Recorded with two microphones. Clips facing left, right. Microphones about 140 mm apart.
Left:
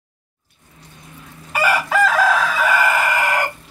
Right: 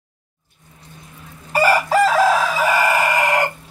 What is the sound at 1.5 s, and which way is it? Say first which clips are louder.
Chicken: right 3 dB; 35° right (ahead or behind).